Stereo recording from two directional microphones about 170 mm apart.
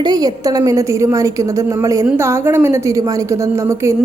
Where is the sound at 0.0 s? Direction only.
25° right (ahead or behind).